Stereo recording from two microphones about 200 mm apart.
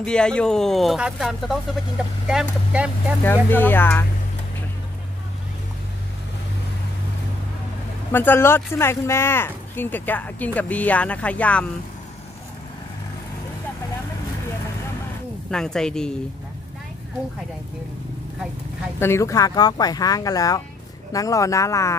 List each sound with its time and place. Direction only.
0.0 s speech: 5° left (ahead or behind)
3.4 s speech: 10° left (ahead or behind)
8.1 s speech: 10° left (ahead or behind)
15.5 s speech: 5° left (ahead or behind)
18.9 s speech: 15° left (ahead or behind)